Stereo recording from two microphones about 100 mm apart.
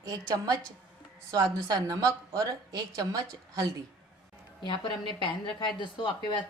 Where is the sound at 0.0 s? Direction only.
40° right (ahead or behind).